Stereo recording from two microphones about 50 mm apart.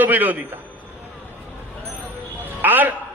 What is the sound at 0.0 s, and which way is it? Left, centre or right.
Speech, right.